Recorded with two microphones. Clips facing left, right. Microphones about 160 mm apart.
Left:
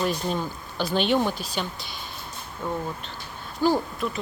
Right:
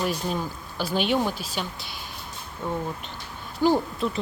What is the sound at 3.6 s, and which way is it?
Speech, 25° right (ahead or behind).